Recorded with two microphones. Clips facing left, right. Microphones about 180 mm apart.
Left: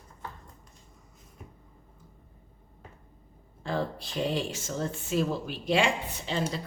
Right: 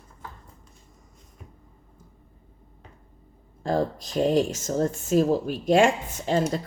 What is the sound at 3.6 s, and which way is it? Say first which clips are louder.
Speech: right 6 dB; 40° right (ahead or behind).